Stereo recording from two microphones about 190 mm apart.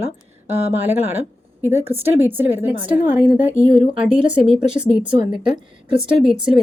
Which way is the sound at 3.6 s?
30° right (ahead or behind).